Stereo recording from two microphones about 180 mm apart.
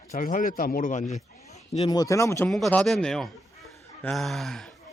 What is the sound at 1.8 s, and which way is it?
Speech, 25° left (ahead or behind).